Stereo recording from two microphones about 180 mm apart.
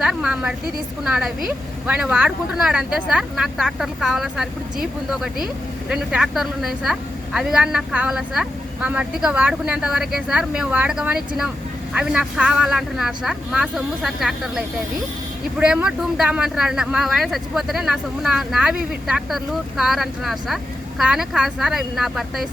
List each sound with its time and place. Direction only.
0.0 s speech: 5° right (ahead or behind)